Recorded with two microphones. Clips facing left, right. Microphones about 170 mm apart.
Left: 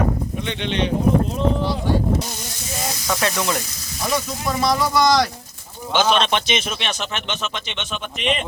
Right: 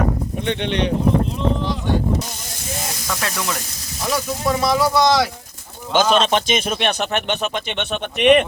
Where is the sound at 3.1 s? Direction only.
10° left (ahead or behind).